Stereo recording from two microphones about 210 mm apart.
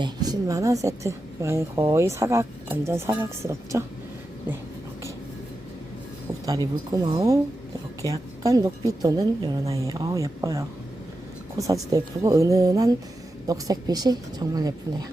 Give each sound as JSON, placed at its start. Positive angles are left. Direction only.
{"t": 0.0, "sound": "a woman's voice", "side_deg": -20}
{"t": 6.9, "sound": "a woman's voice", "side_deg": -20}